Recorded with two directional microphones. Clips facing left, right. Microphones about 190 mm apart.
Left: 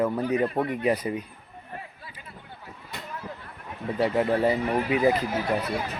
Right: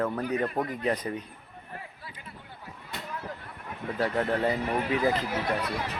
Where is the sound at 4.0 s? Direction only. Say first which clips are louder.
Left 4 dB; 15° left (ahead or behind).